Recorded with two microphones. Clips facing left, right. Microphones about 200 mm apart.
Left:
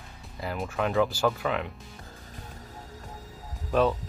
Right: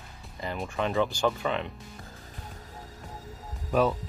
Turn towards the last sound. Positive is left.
turn(degrees=-5)  # may be behind; listen again after turning